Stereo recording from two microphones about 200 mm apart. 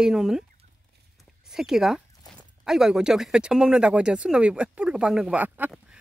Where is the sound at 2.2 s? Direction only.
20° left (ahead or behind).